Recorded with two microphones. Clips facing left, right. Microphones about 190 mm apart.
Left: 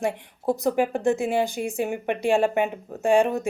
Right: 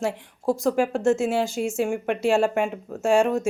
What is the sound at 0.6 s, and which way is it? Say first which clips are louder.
Speech: right 1 dB; centre (ahead or behind).